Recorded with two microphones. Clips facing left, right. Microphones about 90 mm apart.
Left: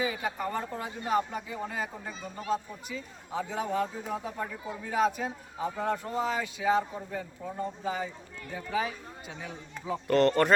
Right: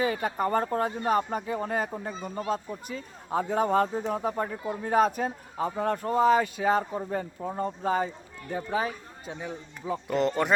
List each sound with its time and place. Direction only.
0.0 s speech: 50° right (ahead or behind)
10.1 s speech: 5° right (ahead or behind)